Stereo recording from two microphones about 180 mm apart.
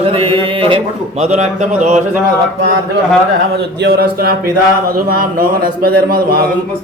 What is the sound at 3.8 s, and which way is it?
Mantra, 60° right (ahead or behind).